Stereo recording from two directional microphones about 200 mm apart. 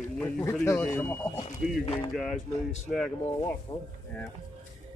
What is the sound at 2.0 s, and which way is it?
Speech, centre (ahead or behind).